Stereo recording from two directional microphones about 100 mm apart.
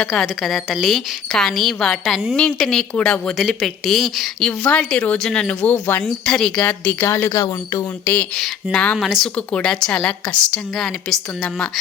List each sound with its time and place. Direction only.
0.1 s a woman's voice: centre (ahead or behind); by 6.0 s 20° left (ahead or behind)
6.0 s a woman's voice: 5° left (ahead or behind)
7.1 s speech: 25° left (ahead or behind)
8.0 s a woman's voice: 15° left (ahead or behind)